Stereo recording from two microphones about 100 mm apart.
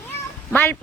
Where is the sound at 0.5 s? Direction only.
15° left (ahead or behind).